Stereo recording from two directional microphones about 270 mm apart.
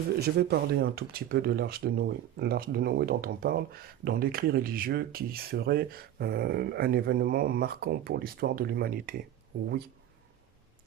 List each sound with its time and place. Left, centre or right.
0.2 s speech: right